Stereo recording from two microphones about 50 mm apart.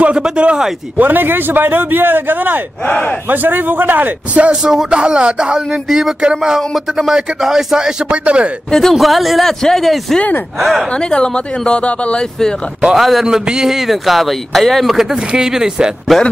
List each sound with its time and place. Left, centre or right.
0.0 s a man's voice: right
0.9 s a man's voice: right
2.9 s speech: left
3.3 s a man's voice: right
4.6 s speech: centre
5.7 s a man's voice: centre
8.1 s a man's voice: right
8.6 s speech: centre
8.9 s a man's voice: centre
10.9 s speech: centre
12.9 s a man's voice: centre
15.1 s speech: centre
16.1 s a man's voice: centre